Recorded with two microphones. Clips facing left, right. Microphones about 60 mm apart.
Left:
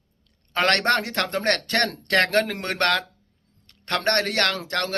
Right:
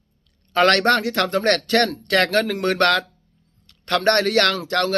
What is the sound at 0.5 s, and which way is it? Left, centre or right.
Speech, left.